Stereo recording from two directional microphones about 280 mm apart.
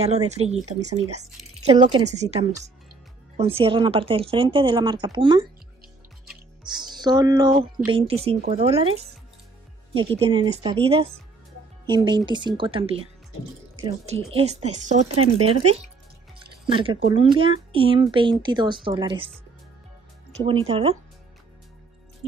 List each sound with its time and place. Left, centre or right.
0.3 s speech: right
6.6 s speech: centre
20.6 s speech: right